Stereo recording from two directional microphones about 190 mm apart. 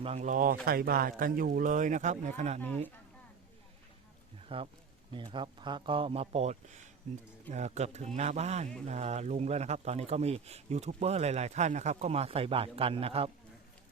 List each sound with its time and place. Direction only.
0.0 s a man's voice: 35° right (ahead or behind)
4.4 s speech: 30° right (ahead or behind)